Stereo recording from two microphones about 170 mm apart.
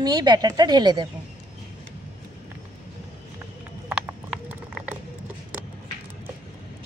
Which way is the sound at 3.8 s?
5° right (ahead or behind).